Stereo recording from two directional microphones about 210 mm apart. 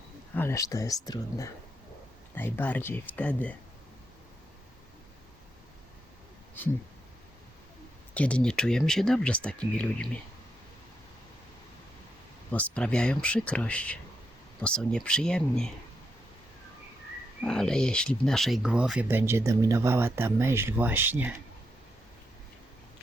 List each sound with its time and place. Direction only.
0.3 s speech: 15° left (ahead or behind)
8.1 s speech: 5° left (ahead or behind)
12.5 s speech: 5° left (ahead or behind)
17.4 s speech: 5° left (ahead or behind)